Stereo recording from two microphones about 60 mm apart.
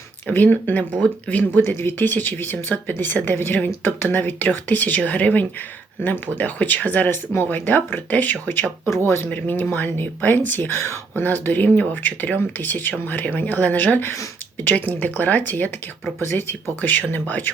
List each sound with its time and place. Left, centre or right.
0.3 s speech: left
1.6 s speech: left
2.0 s speech: left
16.2 s speech: left
16.8 s speech: left